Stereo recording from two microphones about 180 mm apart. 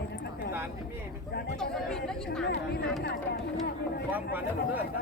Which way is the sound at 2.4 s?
65° left (ahead or behind).